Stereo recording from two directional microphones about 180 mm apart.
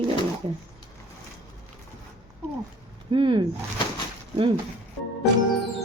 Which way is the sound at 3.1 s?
25° right (ahead or behind).